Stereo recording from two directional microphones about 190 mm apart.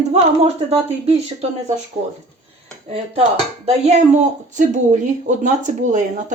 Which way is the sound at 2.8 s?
30° right (ahead or behind).